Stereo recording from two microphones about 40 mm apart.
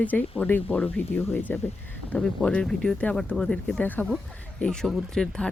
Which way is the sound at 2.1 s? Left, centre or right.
Left.